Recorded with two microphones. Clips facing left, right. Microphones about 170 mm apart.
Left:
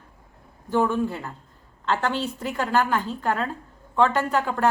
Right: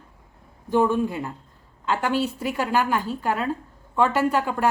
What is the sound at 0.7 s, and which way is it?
A woman's voice, 15° right (ahead or behind).